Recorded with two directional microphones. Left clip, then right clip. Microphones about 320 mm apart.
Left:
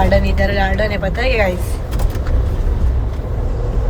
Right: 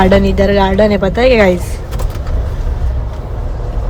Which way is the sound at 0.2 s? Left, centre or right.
Centre.